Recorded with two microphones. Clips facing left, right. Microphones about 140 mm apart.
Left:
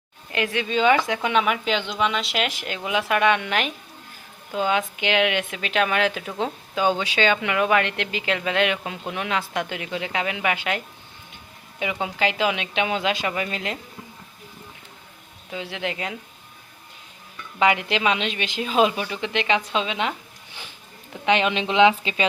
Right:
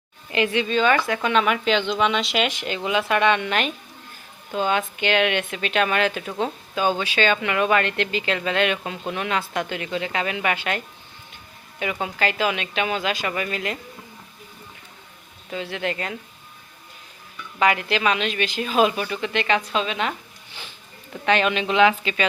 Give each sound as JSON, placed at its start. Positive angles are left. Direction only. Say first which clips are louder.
{"t": 0.3, "sound": "speech", "louder": "right 3 dB", "side_deg": 0}
{"t": 0.7, "sound": "speech", "louder": "left 4 dB", "side_deg": 15}
{"t": 7.0, "sound": "speech", "louder": "even", "side_deg": 15}
{"t": 15.4, "sound": "speech", "louder": "right 2 dB", "side_deg": 15}
{"t": 17.6, "sound": "speech", "louder": "even", "side_deg": 20}